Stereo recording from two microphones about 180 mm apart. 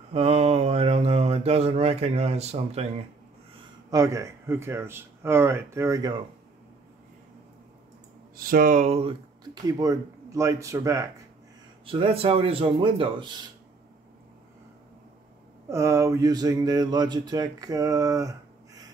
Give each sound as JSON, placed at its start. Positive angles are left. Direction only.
{"t": 0.1, "sound": "mantra", "side_deg": -35}
{"t": 3.5, "sound": "speech", "side_deg": -20}
{"t": 8.4, "sound": "speech", "side_deg": -50}
{"t": 9.4, "sound": "speech", "side_deg": -20}
{"t": 11.8, "sound": "a man's voice", "side_deg": -30}
{"t": 15.7, "sound": "speech", "side_deg": -15}